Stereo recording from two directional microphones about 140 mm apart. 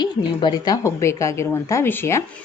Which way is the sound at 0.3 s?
30° left (ahead or behind).